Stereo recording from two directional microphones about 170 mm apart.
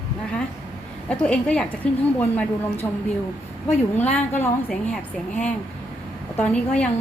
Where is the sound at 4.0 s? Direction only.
10° left (ahead or behind).